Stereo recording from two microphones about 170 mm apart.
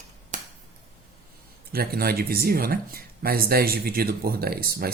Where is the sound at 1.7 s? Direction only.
65° right (ahead or behind).